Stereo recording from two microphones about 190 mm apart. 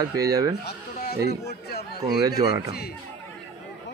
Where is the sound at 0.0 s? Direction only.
20° right (ahead or behind).